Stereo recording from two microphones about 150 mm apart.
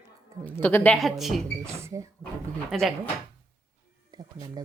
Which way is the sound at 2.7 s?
Centre (ahead or behind).